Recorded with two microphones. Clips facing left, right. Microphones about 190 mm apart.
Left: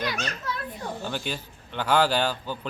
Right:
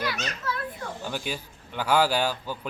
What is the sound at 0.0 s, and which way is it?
Speech, 20° left (ahead or behind).